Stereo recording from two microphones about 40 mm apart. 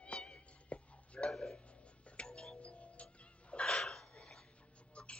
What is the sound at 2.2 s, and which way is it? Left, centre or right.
Music, centre.